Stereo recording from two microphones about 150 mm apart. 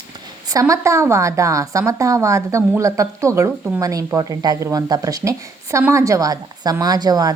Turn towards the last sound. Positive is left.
turn(degrees=-25)  # may be behind; listen again after turning